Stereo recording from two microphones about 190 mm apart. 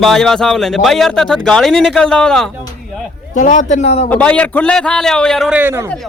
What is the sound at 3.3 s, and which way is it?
Speech, 40° left (ahead or behind).